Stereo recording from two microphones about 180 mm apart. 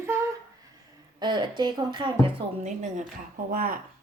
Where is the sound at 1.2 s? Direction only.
25° right (ahead or behind).